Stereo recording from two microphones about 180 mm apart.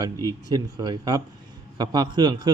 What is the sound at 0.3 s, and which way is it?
Speech, 20° right (ahead or behind).